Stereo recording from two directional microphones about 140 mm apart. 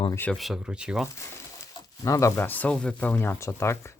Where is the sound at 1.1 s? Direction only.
25° left (ahead or behind).